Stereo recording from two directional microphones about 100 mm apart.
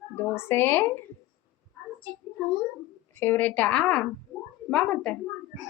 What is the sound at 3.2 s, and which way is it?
Speech, 20° left (ahead or behind).